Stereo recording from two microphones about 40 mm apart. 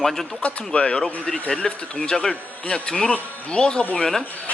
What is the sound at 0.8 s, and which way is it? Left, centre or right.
Speech, left.